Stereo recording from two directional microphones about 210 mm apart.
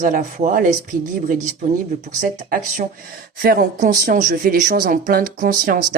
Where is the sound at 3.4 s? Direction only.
40° right (ahead or behind).